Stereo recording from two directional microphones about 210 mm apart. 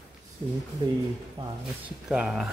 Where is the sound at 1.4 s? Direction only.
25° right (ahead or behind).